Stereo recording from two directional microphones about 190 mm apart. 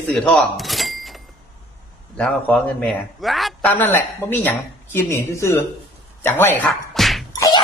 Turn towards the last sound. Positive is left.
turn(degrees=20)  # may be behind; listen again after turning